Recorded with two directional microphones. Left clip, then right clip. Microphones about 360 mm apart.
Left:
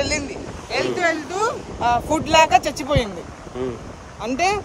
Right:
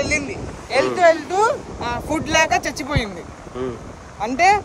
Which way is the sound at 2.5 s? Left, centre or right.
Centre.